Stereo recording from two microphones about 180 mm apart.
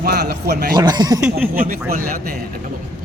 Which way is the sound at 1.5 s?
50° right (ahead or behind).